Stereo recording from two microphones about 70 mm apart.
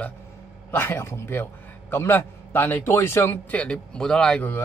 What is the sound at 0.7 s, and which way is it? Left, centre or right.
A man's voice, left.